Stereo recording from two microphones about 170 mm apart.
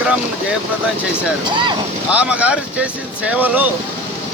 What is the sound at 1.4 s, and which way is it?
Speech, 30° right (ahead or behind).